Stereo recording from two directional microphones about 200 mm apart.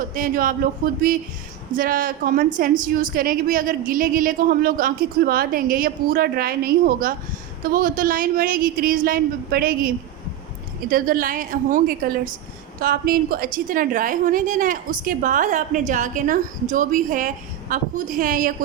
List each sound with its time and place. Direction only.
0.0 s a woman's voice: 45° right (ahead or behind)